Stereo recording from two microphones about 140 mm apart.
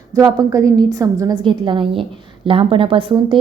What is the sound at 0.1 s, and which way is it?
Speech, 25° right (ahead or behind).